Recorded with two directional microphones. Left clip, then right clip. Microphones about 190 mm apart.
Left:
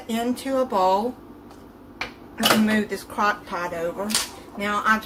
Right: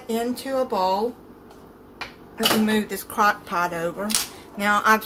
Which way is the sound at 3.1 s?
50° right (ahead or behind).